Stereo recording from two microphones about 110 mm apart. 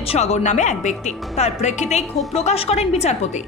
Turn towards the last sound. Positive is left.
turn(degrees=80)